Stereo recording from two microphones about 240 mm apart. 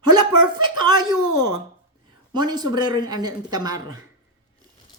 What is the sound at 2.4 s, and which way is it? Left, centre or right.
A woman's voice, centre.